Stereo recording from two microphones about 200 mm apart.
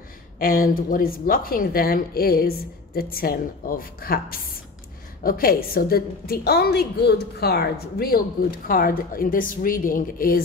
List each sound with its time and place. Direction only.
0.4 s speech: 45° left (ahead or behind)